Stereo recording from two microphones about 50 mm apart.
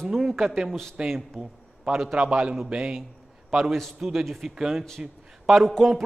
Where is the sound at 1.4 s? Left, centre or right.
Centre.